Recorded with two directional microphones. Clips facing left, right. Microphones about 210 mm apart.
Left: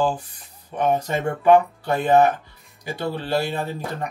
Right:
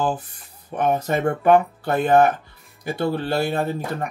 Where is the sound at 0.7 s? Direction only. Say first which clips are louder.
Right 1 dB; 50° right (ahead or behind).